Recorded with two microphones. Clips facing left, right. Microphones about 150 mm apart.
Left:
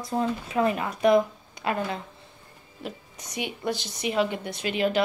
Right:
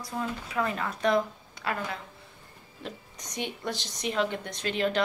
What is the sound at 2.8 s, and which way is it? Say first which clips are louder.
A woman's voice: left 3 dB; 10° left (ahead or behind).